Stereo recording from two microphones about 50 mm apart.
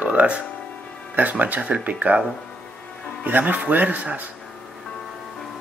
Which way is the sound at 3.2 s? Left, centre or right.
Right.